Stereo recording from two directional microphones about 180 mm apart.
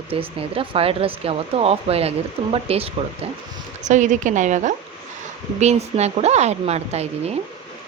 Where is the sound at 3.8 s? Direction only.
45° right (ahead or behind).